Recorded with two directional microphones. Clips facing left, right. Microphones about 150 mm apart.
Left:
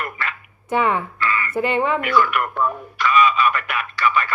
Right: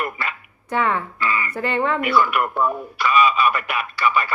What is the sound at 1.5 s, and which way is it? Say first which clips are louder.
Speech: left 3 dB; 15° left (ahead or behind).